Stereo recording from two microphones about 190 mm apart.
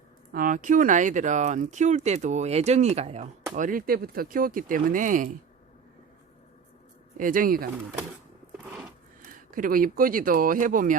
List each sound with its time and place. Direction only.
0.3 s speech: 45° right (ahead or behind)
7.2 s speech: 45° right (ahead or behind)
8.5 s a sound: 5° right (ahead or behind)
9.5 s speech: 45° right (ahead or behind)